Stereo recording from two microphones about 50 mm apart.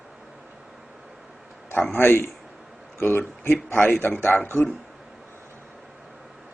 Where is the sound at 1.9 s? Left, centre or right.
Left.